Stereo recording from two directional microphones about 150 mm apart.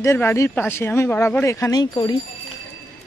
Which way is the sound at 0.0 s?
15° left (ahead or behind).